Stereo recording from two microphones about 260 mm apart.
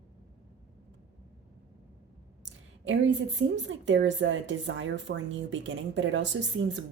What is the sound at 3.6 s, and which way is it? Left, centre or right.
A woman's voice, right.